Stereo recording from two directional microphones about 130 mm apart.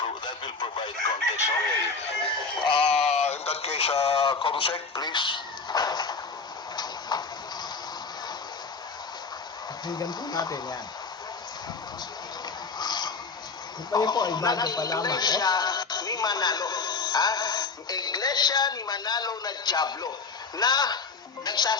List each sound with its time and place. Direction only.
0.3 s speech: 40° left (ahead or behind)
2.0 s speech: 45° left (ahead or behind); by 6.1 s 30° left (ahead or behind)
6.7 s a sound: 30° left (ahead or behind)
9.8 s speech: 30° left (ahead or behind)
12.8 s a sound: 35° left (ahead or behind)
13.9 s speech: 30° left (ahead or behind)